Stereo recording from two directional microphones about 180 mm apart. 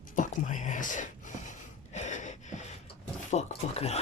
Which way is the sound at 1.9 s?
40° left (ahead or behind).